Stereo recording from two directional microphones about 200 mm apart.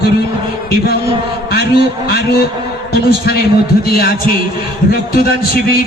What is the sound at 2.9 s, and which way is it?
A man's voice, 50° left (ahead or behind).